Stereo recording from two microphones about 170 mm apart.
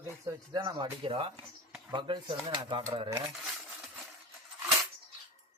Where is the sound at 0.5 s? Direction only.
30° right (ahead or behind).